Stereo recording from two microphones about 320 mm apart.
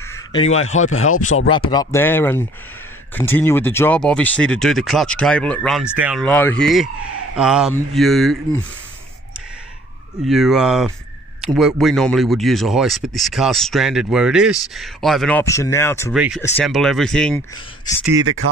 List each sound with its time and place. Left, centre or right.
0.1 s a sound: centre
0.8 s speech: left
1.7 s speech: centre
10.2 s speech: centre
16.2 s speech: centre
18.2 s speech: right